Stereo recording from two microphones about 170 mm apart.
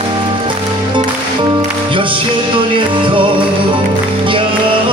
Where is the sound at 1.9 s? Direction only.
30° right (ahead or behind).